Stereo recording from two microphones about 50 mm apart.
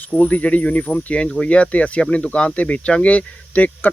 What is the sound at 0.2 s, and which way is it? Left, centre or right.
Speech, left.